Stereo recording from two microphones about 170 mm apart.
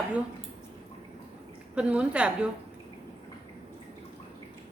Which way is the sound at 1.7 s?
5° right (ahead or behind).